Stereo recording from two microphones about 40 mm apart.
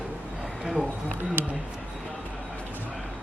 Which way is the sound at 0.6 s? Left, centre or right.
Centre.